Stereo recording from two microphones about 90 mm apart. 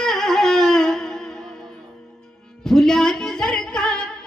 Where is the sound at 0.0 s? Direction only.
5° left (ahead or behind).